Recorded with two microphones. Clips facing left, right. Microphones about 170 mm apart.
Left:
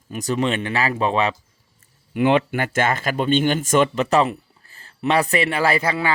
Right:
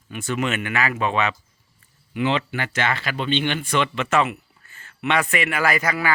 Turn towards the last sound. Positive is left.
turn(degrees=30)  # may be behind; listen again after turning